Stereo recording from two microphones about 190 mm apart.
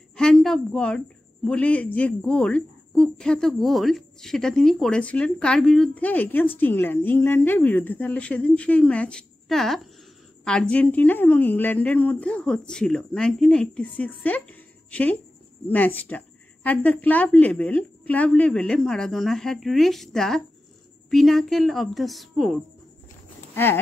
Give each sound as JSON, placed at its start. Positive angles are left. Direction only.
{"t": 0.1, "sound": "a woman's voice", "side_deg": 5}
{"t": 23.5, "sound": "speech", "side_deg": 10}